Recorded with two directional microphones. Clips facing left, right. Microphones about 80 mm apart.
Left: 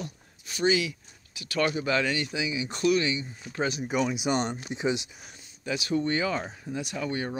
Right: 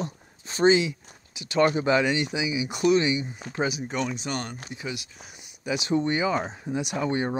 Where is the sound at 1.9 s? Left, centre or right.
Right.